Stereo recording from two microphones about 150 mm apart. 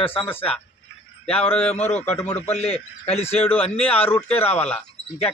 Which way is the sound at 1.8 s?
50° left (ahead or behind).